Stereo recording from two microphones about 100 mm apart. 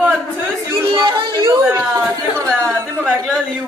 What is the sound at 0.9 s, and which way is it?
Speech, 50° right (ahead or behind).